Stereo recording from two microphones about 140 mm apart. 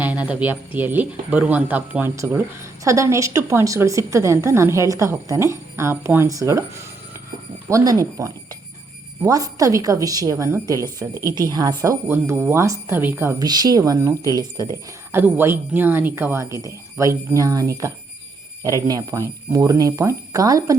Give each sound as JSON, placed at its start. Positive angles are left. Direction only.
{"t": 0.0, "sound": "speech", "side_deg": -10}
{"t": 13.4, "sound": "speech", "side_deg": -30}
{"t": 15.1, "sound": "speech", "side_deg": -15}